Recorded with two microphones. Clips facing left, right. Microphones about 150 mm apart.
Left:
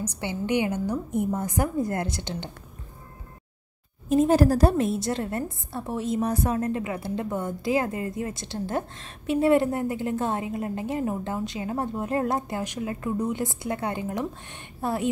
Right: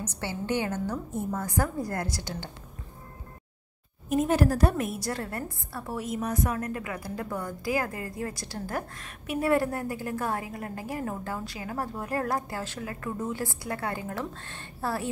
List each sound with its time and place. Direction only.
0.0 s a woman's voice: 15° left (ahead or behind)
4.1 s a woman's voice: 30° left (ahead or behind)